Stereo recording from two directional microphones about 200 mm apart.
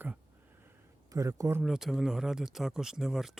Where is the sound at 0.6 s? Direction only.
15° right (ahead or behind).